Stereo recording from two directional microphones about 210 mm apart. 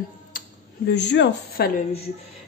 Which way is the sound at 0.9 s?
55° left (ahead or behind).